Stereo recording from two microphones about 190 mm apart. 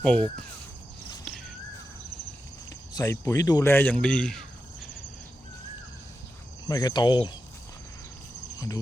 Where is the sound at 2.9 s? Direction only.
15° left (ahead or behind).